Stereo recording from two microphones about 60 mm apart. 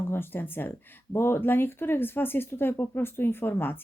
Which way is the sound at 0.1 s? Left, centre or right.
Left.